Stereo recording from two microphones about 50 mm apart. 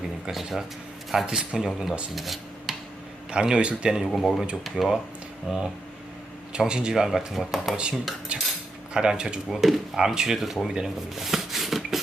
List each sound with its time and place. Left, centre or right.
0.3 s speech: centre
2.1 s rub: centre
3.3 s speech: centre
4.0 s speech: centre
5.5 s speech: centre
6.7 s speech: centre
7.5 s speech: centre
8.3 s cutlery: right
8.9 s speech: centre
9.5 s speech: centre
10.8 s shuffling cards: centre